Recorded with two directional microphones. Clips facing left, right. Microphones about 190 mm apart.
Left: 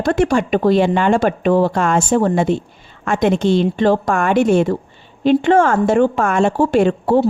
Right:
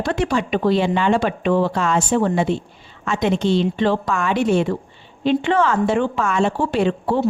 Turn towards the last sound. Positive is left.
turn(degrees=45)  # may be behind; listen again after turning